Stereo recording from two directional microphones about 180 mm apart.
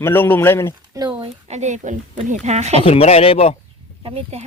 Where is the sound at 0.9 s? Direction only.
25° right (ahead or behind).